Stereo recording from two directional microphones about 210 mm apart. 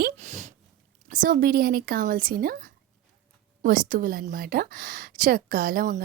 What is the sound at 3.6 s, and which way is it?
A woman's voice, 40° right (ahead or behind).